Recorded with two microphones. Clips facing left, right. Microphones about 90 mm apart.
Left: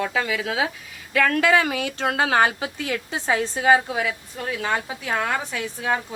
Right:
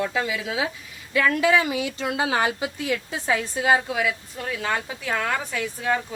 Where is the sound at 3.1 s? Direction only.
35° left (ahead or behind).